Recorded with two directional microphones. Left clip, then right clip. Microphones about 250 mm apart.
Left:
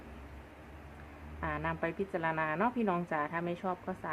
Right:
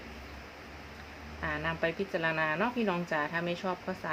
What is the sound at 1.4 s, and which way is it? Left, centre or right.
Speech, centre.